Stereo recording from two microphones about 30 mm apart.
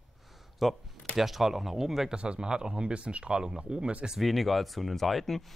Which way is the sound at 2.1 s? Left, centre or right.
Right.